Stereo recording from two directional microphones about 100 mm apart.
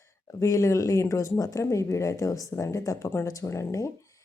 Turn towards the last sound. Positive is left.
turn(degrees=30)  # may be behind; listen again after turning